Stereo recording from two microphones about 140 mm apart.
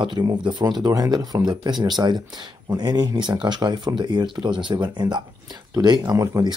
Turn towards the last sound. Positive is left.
turn(degrees=-25)  # may be behind; listen again after turning